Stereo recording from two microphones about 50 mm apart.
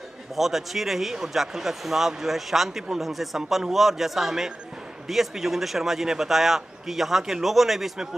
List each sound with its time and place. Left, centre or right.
0.4 s a man's voice: centre